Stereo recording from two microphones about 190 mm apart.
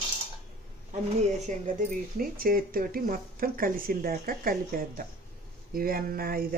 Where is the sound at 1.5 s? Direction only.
45° right (ahead or behind).